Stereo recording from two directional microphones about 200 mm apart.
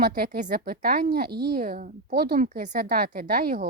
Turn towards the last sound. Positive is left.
turn(degrees=-45)  # may be behind; listen again after turning